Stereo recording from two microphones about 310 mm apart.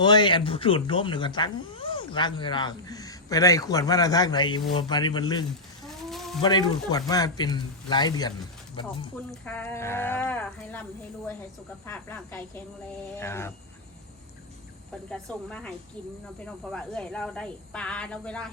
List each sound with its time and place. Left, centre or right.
0.0 s speech: centre
6.1 s a sound: centre
6.4 s speech: centre
9.3 s speech: centre
11.9 s speech: centre
15.1 s speech: centre